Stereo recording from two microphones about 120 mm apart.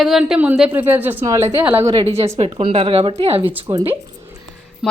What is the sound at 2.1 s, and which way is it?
A woman's voice, 60° right (ahead or behind).